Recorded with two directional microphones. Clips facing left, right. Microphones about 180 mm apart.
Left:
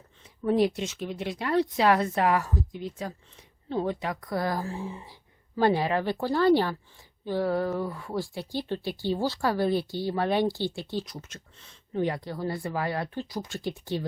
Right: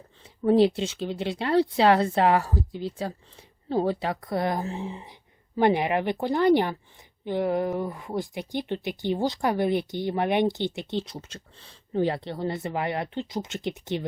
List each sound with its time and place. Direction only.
0.4 s speech: 30° right (ahead or behind)